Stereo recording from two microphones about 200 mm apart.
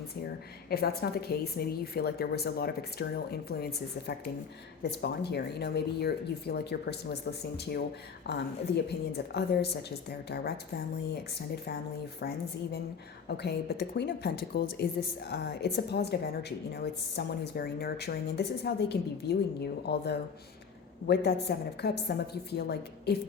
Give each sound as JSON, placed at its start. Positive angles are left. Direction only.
{"t": 0.7, "sound": "a woman's voice", "side_deg": 50}
{"t": 13.2, "sound": "speech", "side_deg": 55}
{"t": 21.1, "sound": "speech", "side_deg": 55}